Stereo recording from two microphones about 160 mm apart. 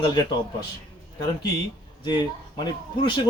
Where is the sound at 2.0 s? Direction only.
25° left (ahead or behind).